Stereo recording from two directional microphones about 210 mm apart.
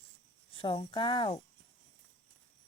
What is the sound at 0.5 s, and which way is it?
Speech, 25° left (ahead or behind).